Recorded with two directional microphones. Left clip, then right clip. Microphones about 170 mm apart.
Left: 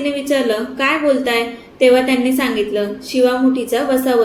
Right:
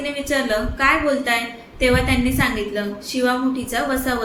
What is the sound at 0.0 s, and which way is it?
A woman's voice, 30° left (ahead or behind).